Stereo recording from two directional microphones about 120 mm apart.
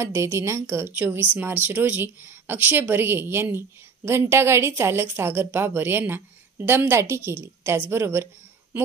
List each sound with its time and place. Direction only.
0.0 s speech: 25° right (ahead or behind)